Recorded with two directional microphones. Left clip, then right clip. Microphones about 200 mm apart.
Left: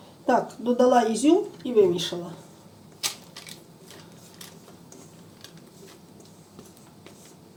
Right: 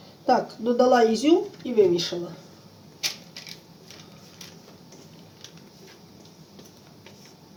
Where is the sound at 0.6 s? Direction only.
20° right (ahead or behind).